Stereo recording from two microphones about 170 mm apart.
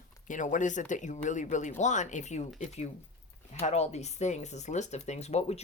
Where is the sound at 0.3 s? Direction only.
50° left (ahead or behind).